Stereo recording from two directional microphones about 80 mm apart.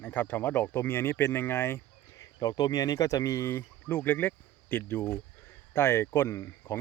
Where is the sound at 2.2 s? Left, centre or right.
Left.